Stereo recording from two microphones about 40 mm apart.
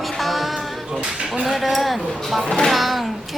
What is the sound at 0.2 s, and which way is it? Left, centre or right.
Music, centre.